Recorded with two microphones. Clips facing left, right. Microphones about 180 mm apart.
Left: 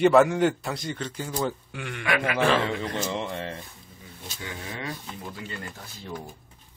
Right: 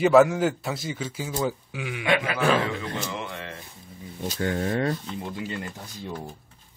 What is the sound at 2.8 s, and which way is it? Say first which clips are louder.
Speech: left 2 dB; 30° left (ahead or behind).